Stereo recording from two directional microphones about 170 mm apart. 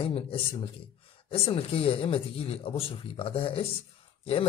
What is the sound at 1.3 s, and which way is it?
A man's voice, 35° left (ahead or behind).